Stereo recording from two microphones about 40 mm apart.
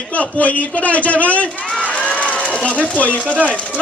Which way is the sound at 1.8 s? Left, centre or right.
Left.